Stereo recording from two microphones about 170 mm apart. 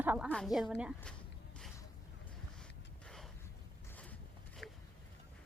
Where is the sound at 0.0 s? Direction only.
10° right (ahead or behind).